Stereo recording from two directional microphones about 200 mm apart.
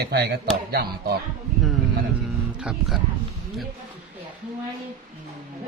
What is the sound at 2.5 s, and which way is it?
Speech, 5° right (ahead or behind).